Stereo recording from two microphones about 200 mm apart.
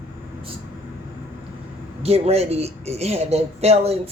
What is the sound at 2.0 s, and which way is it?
Speech, 30° right (ahead or behind).